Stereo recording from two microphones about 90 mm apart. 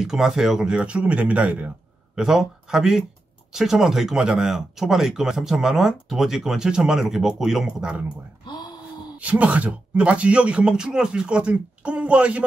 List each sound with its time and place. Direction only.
0.0 s speech: 5° right (ahead or behind)
8.5 s speech: 50° left (ahead or behind)
9.2 s speech: 15° right (ahead or behind)